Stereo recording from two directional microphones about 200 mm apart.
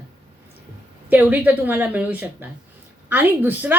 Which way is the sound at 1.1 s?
10° right (ahead or behind).